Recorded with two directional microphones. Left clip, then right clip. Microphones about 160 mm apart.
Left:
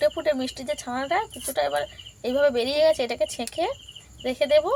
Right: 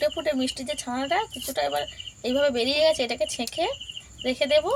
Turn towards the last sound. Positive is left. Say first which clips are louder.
# left 1 dB
turn(degrees=0)  # may be behind; listen again after turning